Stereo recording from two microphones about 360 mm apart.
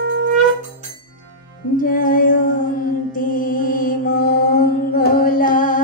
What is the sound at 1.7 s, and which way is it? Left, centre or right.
Female singing, left.